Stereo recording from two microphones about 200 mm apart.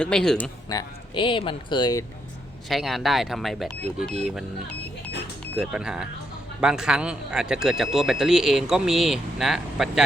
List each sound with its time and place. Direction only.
0.0 s a man's voice: 5° left (ahead or behind)
0.7 s speech: 20° left (ahead or behind)
2.6 s a man's voice: centre (ahead or behind)
5.5 s a man's voice: 5° right (ahead or behind)